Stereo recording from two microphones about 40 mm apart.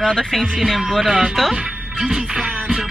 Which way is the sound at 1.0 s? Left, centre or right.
Right.